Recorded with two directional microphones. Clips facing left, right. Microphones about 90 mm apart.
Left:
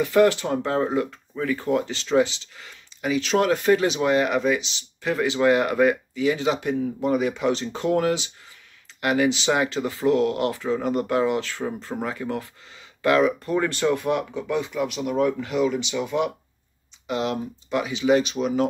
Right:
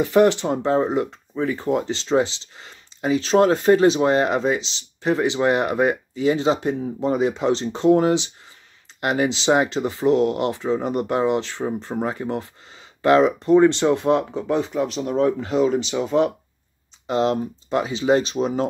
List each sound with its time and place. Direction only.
0.0 s speech: 25° right (ahead or behind)